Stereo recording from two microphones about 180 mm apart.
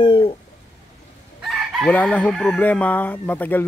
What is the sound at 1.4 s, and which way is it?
Speech, centre (ahead or behind).